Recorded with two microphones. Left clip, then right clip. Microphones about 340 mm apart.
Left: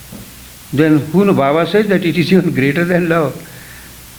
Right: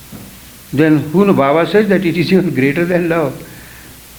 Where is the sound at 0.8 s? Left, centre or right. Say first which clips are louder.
Right 1 dB; left.